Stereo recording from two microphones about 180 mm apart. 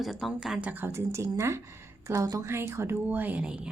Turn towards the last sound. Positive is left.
turn(degrees=-5)  # may be behind; listen again after turning